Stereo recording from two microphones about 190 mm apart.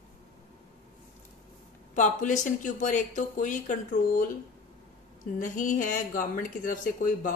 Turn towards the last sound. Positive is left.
turn(degrees=45)  # may be behind; listen again after turning